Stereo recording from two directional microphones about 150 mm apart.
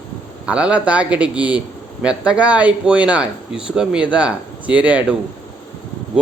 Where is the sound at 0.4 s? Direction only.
10° right (ahead or behind).